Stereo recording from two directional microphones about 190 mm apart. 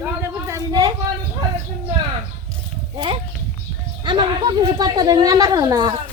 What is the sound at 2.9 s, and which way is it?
A woman's voice, 25° right (ahead or behind).